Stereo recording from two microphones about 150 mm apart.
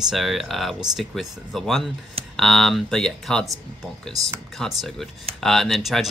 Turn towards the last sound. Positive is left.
turn(degrees=0)  # may be behind; listen again after turning